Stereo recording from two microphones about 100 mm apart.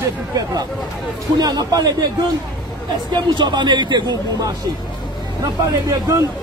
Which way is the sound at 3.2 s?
45° right (ahead or behind).